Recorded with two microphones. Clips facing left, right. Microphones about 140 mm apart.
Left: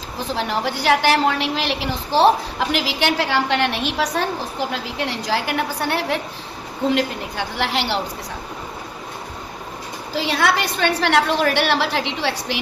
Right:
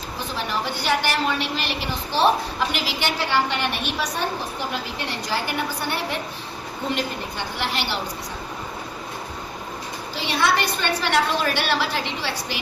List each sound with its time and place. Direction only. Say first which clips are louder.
0.6 s a woman's voice: left 6 dB; 90° left
10.2 s a woman's voice: left 3 dB; 90° left